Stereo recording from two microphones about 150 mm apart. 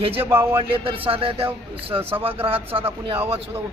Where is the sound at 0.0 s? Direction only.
40° right (ahead or behind).